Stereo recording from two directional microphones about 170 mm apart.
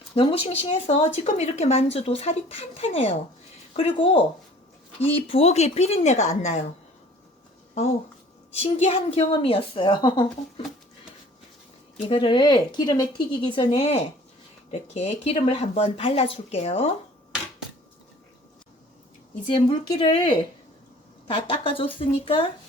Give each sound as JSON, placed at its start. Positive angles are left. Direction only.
{"t": 0.2, "sound": "speech", "side_deg": 30}
{"t": 8.6, "sound": "speech", "side_deg": 40}
{"t": 12.0, "sound": "speech", "side_deg": 30}
{"t": 13.7, "sound": "speech", "side_deg": 40}
{"t": 19.5, "sound": "speech", "side_deg": 30}